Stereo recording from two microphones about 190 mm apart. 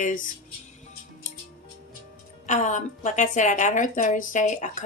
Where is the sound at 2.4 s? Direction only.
40° left (ahead or behind).